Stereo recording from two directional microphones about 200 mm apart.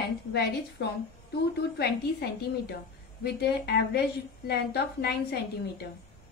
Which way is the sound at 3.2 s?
55° left (ahead or behind).